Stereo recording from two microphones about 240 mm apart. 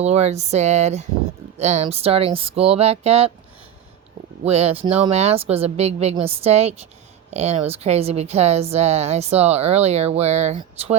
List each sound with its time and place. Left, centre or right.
0.0 s a woman's voice: right
4.4 s a woman's voice: right